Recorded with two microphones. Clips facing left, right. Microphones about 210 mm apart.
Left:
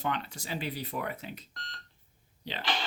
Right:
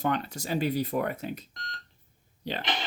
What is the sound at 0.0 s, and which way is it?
Speech, 45° right (ahead or behind).